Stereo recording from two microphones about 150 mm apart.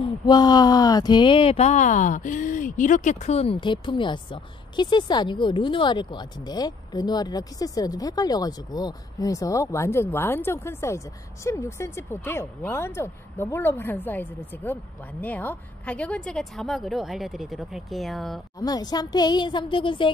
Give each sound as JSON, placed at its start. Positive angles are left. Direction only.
{"t": 0.0, "sound": "speech", "side_deg": 30}
{"t": 18.6, "sound": "speech", "side_deg": 25}